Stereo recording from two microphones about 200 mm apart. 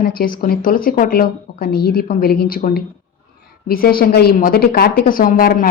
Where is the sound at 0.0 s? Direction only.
45° left (ahead or behind).